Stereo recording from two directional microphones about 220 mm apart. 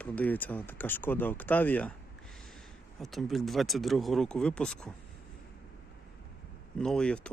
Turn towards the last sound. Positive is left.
turn(degrees=5)  # may be behind; listen again after turning